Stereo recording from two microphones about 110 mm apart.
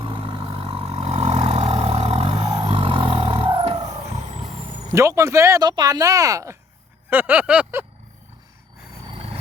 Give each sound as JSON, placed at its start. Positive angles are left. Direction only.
{"t": 0.0, "sound": "vehicle", "side_deg": -50}
{"t": 4.9, "sound": "speech", "side_deg": -30}
{"t": 7.1, "sound": "a sound", "side_deg": -15}
{"t": 9.0, "sound": "vehicle", "side_deg": -60}